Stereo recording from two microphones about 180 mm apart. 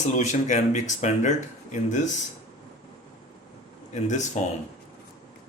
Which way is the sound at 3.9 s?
40° left (ahead or behind).